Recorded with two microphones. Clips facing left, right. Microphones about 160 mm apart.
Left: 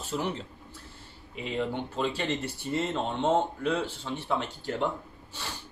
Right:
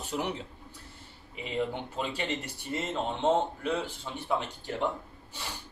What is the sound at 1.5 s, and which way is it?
Speech, 10° right (ahead or behind).